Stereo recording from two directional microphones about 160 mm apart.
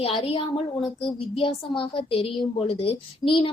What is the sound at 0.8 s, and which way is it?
Speech, centre (ahead or behind).